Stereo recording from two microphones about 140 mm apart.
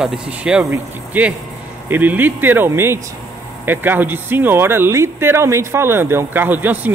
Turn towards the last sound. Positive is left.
turn(degrees=-15)  # may be behind; listen again after turning